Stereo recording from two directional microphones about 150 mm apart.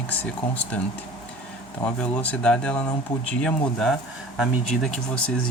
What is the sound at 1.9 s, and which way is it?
Speech, 10° left (ahead or behind).